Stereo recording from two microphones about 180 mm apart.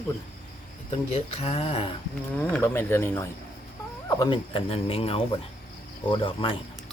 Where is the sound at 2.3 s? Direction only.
10° left (ahead or behind); by 6.6 s 30° left (ahead or behind).